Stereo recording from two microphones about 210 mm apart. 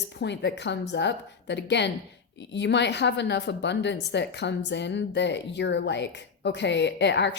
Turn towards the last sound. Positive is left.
turn(degrees=55)  # may be behind; listen again after turning